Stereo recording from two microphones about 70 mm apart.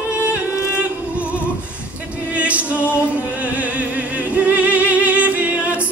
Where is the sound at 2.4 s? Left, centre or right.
Centre.